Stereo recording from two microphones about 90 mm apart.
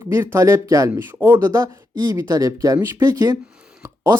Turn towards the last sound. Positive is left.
turn(degrees=-35)  # may be behind; listen again after turning